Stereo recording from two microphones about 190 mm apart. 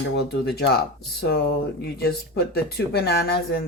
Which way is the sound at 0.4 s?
55° left (ahead or behind).